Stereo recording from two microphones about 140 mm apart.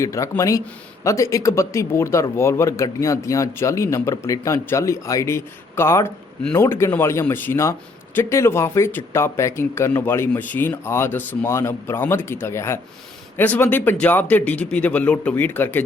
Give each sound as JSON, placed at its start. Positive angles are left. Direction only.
{"t": 0.0, "sound": "a man's voice", "side_deg": 20}